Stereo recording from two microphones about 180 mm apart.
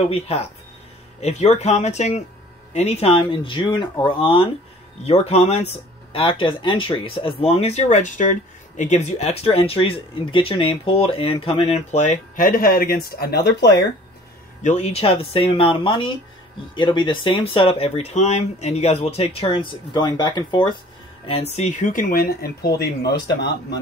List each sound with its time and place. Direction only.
0.1 s speech: 35° left (ahead or behind); by 13.7 s 65° left (ahead or behind)
14.6 s speech: 40° left (ahead or behind); by 20.7 s 25° left (ahead or behind)
21.3 s speech: 35° left (ahead or behind); by 23.8 s 70° left (ahead or behind)